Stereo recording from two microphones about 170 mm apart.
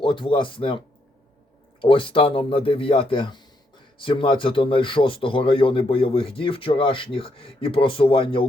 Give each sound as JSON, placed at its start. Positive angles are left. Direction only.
{"t": 0.0, "sound": "speech", "side_deg": 30}
{"t": 1.8, "sound": "speech", "side_deg": 30}